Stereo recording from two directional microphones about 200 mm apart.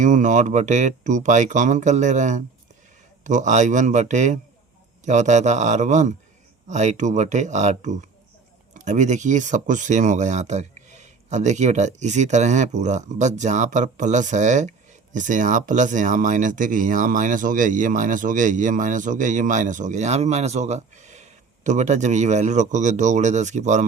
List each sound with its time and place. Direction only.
0.0 s speech: 40° right (ahead or behind)